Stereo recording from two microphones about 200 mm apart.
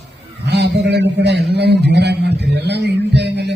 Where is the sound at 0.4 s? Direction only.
60° right (ahead or behind).